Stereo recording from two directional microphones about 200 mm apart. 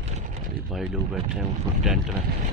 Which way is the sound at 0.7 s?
Centre (ahead or behind).